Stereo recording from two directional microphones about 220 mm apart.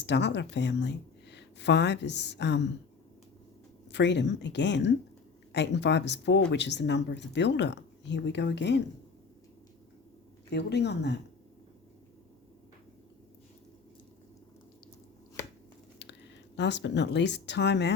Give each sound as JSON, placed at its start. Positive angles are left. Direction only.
{"t": 0.0, "sound": "speech", "side_deg": 50}
{"t": 3.9, "sound": "speech", "side_deg": 50}
{"t": 10.5, "sound": "speech", "side_deg": 50}
{"t": 16.6, "sound": "speech", "side_deg": 55}